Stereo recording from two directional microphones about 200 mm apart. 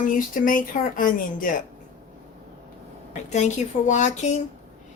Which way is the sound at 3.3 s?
35° left (ahead or behind).